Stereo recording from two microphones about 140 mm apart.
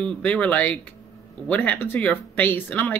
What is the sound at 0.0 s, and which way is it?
Speech, 10° left (ahead or behind).